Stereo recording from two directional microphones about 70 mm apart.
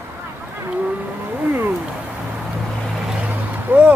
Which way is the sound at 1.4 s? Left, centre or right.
Right.